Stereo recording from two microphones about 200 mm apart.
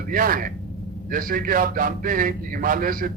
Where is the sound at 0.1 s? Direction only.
45° right (ahead or behind).